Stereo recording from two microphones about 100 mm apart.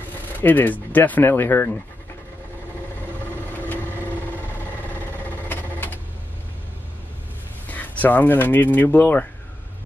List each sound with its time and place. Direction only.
0.4 s speech: 20° left (ahead or behind)
5.5 s sewing machine: 20° left (ahead or behind)
7.6 s speech: 15° left (ahead or behind)